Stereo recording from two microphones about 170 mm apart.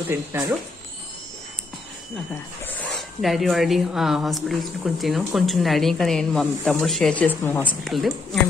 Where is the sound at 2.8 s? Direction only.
Centre (ahead or behind).